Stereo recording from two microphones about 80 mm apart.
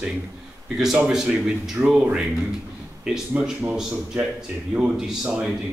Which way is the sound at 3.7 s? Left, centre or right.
Centre.